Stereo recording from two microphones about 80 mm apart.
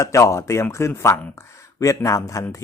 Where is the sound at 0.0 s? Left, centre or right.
Left.